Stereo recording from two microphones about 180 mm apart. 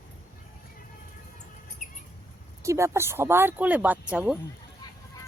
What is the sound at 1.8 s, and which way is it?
Rodents, 45° left (ahead or behind).